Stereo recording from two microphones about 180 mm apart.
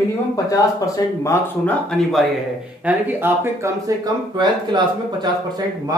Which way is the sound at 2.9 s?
10° right (ahead or behind).